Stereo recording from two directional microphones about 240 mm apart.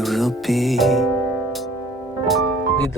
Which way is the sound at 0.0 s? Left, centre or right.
Centre.